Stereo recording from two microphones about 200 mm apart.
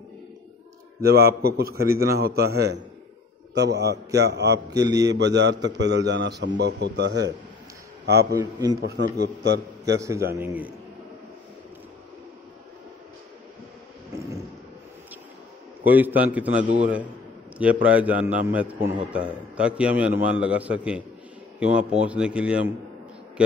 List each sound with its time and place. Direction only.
1.0 s a man's voice: 50° right (ahead or behind)
1.8 s a man's voice: 15° right (ahead or behind)
2.1 s a man's voice: 55° right (ahead or behind)
4.8 s a man's voice: 15° right (ahead or behind)
5.1 s a man's voice: 60° right (ahead or behind)
8.4 s a man's voice: 20° right (ahead or behind)
8.8 s a man's voice: 60° right (ahead or behind)
9.9 s a man's voice: 15° right (ahead or behind)
15.8 s a man's voice: 10° right (ahead or behind)